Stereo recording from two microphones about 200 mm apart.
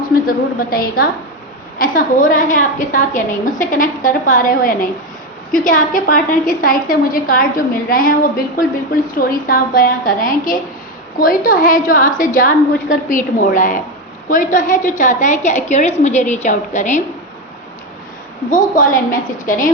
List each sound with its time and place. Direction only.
0.1 s a woman's voice: 45° left (ahead or behind)
18.5 s a woman's voice: 40° left (ahead or behind)